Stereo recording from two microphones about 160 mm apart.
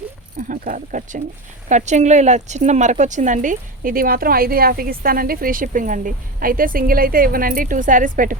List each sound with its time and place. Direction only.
0.3 s a woman's voice: 55° right (ahead or behind)